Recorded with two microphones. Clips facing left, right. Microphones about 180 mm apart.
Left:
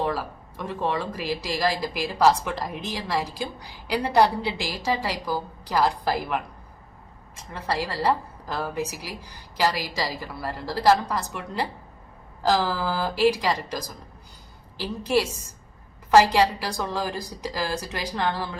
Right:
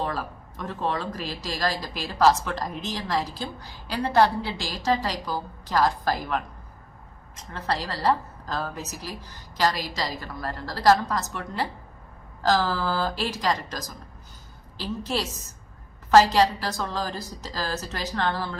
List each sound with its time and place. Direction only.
0.0 s speech: 10° left (ahead or behind)